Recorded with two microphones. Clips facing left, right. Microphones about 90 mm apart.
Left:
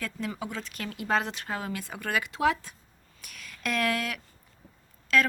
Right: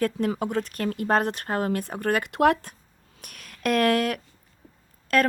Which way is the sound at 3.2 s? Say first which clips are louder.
Right 7 dB; 55° right (ahead or behind).